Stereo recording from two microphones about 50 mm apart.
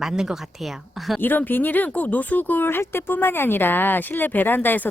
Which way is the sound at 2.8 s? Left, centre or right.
Left.